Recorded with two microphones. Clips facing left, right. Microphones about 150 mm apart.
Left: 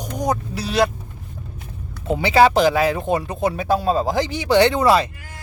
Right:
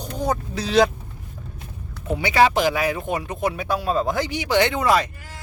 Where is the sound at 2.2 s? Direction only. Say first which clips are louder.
Left 4 dB; 35° left (ahead or behind).